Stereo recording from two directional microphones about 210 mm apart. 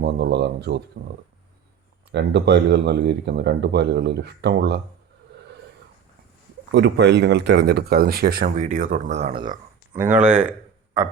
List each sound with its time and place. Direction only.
0.0 s speech: 50° right (ahead or behind)
2.1 s speech: 55° right (ahead or behind)
6.7 s speech: 60° right (ahead or behind); by 9.5 s 25° right (ahead or behind)
10.0 s speech: 10° right (ahead or behind)